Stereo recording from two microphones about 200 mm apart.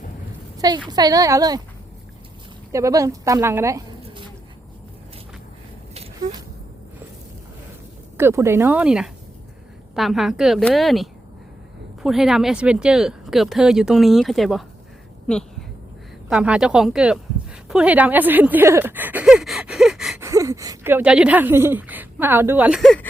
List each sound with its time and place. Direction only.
0.9 s speech: 20° right (ahead or behind)
2.7 s a woman's voice: 15° right (ahead or behind)
8.2 s a woman's voice: 15° right (ahead or behind); by 15.4 s 5° left (ahead or behind)
16.3 s a sound: 5° right (ahead or behind)
20.2 s speech: 15° right (ahead or behind); by 23.0 s centre (ahead or behind)